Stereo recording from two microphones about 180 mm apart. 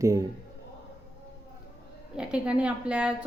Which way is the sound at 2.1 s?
5° right (ahead or behind).